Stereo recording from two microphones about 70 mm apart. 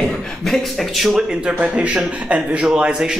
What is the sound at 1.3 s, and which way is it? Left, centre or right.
A man's voice, centre.